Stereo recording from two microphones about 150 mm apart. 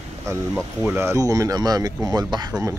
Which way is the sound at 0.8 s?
15° right (ahead or behind).